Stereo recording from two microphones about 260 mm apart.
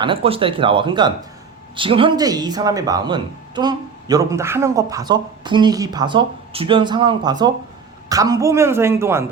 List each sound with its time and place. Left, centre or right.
0.0 s speech: right